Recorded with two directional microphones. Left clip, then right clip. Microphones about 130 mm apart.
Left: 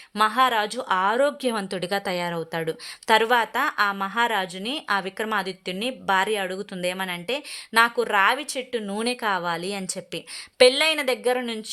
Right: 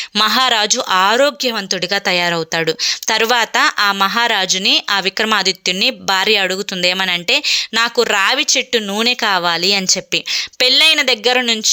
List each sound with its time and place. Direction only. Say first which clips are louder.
0.2 s speech: right 7 dB; 20° right (ahead or behind)